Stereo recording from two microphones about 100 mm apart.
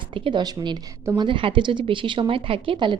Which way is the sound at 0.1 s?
50° right (ahead or behind).